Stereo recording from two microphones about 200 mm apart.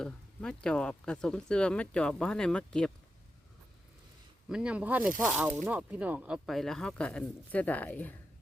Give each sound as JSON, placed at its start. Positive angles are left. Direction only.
{"t": 0.0, "sound": "speech", "side_deg": 5}
{"t": 4.4, "sound": "speech", "side_deg": -5}